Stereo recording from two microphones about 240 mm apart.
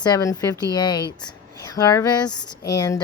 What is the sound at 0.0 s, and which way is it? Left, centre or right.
Speech, centre.